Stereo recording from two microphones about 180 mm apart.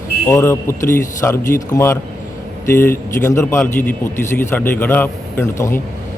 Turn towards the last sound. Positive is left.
turn(degrees=15)  # may be behind; listen again after turning